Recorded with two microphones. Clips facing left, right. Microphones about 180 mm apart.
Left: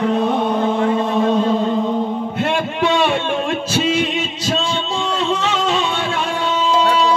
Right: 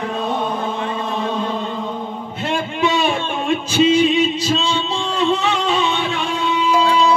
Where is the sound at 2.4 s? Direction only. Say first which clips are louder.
Even; 70° left (ahead or behind).